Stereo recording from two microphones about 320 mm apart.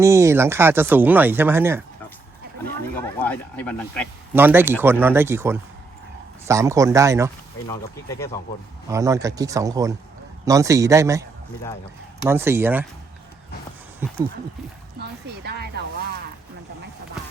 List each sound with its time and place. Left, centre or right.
0.0 s speech: centre
3.0 s speech: centre
4.4 s speech: centre
7.7 s speech: centre
8.9 s speech: centre
15.4 s speech: right